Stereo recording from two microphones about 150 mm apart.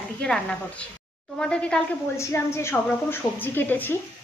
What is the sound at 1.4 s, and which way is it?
Speech, 5° left (ahead or behind).